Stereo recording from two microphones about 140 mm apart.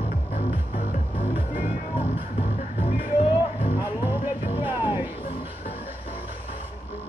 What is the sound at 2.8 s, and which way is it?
Music, 45° left (ahead or behind).